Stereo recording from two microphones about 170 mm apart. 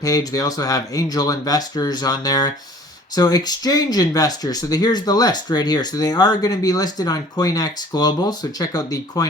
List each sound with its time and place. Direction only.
0.0 s speech: 20° left (ahead or behind)